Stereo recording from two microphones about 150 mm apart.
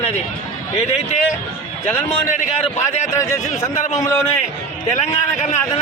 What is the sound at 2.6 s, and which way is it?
Speech, 50° left (ahead or behind).